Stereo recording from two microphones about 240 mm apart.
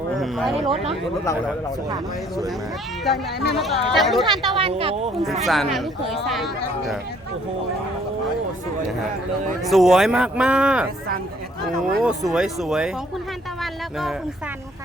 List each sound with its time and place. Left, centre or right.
0.2 s speech: centre
3.0 s speech: centre
4.5 s speech: right
5.2 s speech: centre
9.6 s speech: centre